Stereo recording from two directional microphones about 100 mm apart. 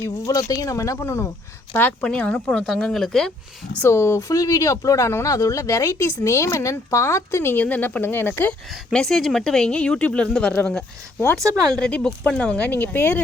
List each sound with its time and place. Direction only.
0.0 s speech: 35° left (ahead or behind)
1.7 s speech: 15° left (ahead or behind)
3.8 s speech: 25° left (ahead or behind)
8.9 s speech: 5° left (ahead or behind)
11.8 s speech: 10° left (ahead or behind)